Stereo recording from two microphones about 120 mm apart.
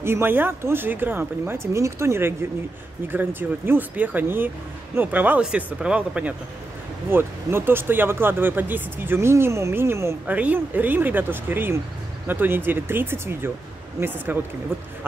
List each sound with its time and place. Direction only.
0.0 s speech: 20° right (ahead or behind)